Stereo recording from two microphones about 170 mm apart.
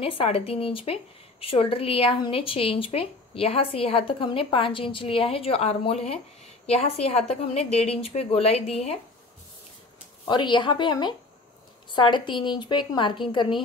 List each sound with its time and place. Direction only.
0.0 s speech: 35° left (ahead or behind)
10.2 s a woman's voice: 25° left (ahead or behind)